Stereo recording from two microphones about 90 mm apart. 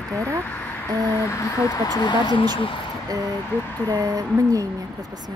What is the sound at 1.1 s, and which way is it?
Speech, 35° left (ahead or behind).